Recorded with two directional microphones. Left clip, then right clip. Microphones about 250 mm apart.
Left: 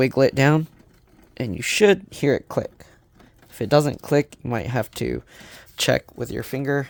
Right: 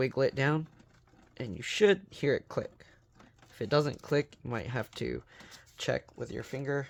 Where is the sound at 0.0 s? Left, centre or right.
Left.